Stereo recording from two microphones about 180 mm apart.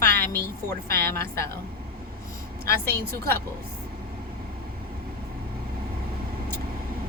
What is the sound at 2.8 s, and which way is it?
Speech, 15° left (ahead or behind).